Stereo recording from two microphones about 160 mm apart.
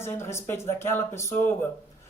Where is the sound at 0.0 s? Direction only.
15° left (ahead or behind).